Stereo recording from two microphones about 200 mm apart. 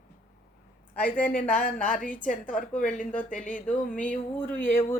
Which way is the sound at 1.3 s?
45° left (ahead or behind).